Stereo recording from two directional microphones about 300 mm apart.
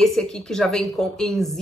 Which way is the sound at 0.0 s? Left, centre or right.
Centre.